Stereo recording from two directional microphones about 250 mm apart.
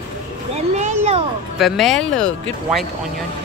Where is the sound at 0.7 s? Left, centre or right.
Right.